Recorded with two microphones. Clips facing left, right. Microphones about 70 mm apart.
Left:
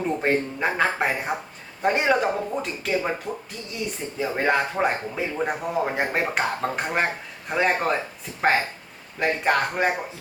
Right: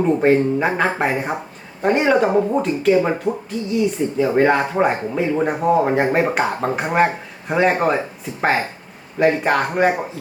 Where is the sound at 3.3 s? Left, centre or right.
Right.